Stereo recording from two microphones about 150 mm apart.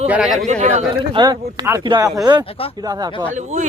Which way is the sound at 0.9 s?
30° right (ahead or behind).